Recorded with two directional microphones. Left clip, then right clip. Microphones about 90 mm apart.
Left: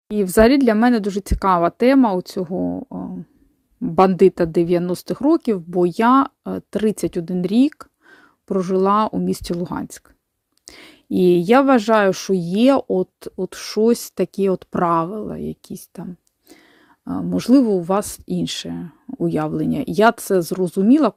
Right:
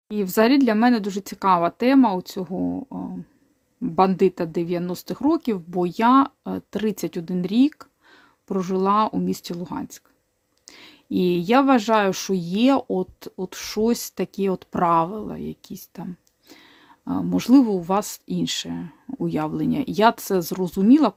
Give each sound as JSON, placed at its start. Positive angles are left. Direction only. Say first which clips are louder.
{"t": 0.1, "sound": "speech", "louder": "left 5 dB", "side_deg": 55}
{"t": 2.6, "sound": "speech", "louder": "left 3 dB", "side_deg": 30}
{"t": 4.2, "sound": "speech", "louder": "left 6 dB", "side_deg": 70}
{"t": 4.8, "sound": "speech", "louder": "left 4 dB", "side_deg": 55}
{"t": 7.4, "sound": "speech", "louder": "left 2 dB", "side_deg": 60}
{"t": 10.7, "sound": "speech", "louder": "left 3 dB", "side_deg": 65}
{"t": 12.9, "sound": "speech", "louder": "left 5 dB", "side_deg": 40}
{"t": 14.3, "sound": "a woman's voice", "louder": "left 4 dB", "side_deg": 50}